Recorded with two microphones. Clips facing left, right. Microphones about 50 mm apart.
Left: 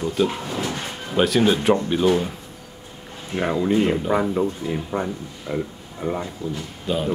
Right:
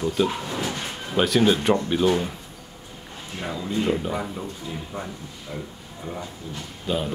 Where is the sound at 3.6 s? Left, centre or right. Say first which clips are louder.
Left 7 dB; left.